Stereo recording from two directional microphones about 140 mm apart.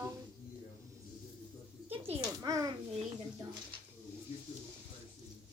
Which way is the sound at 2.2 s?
25° right (ahead or behind).